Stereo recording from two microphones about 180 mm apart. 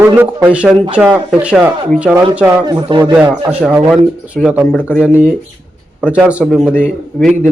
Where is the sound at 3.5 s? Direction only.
5° right (ahead or behind).